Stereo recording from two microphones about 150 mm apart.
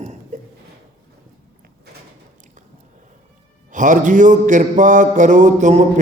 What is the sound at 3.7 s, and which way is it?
Mantra, 60° right (ahead or behind).